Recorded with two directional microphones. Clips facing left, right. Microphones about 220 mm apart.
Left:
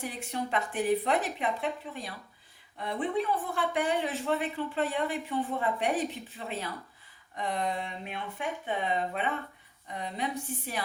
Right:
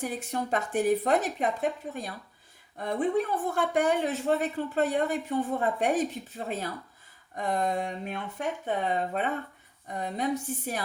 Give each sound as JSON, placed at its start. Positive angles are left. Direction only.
{"t": 0.0, "sound": "speech", "side_deg": -45}